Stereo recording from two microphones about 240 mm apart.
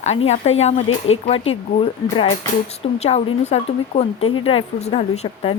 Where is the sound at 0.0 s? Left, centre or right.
Left.